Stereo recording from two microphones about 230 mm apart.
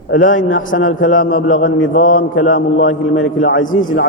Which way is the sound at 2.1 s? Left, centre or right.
Left.